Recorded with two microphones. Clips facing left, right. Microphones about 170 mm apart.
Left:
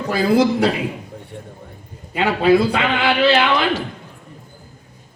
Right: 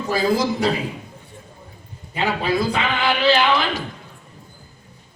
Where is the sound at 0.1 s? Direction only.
60° left (ahead or behind).